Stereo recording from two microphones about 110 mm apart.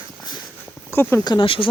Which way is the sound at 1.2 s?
45° left (ahead or behind).